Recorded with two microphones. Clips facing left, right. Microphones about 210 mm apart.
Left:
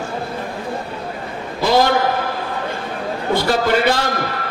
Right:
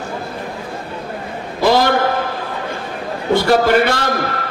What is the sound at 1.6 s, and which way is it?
Speech, 55° right (ahead or behind).